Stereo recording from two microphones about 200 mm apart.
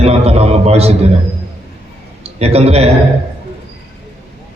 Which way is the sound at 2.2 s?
30° right (ahead or behind).